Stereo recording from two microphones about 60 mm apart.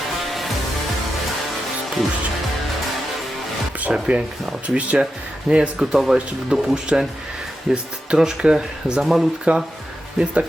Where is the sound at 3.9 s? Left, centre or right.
Centre.